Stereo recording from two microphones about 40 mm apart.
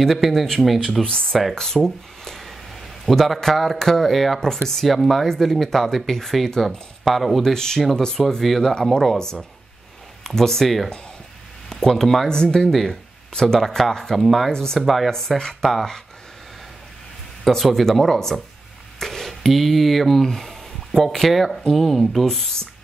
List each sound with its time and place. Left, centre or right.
0.0 s speech: centre
1.0 s a man's voice: centre
7.1 s speech: centre
7.5 s speech: centre
8.4 s speech: centre
11.8 s speech: centre
12.3 s speech: centre
14.5 s speech: centre
14.8 s speech: centre
15.0 s speech: centre
17.7 s speech: centre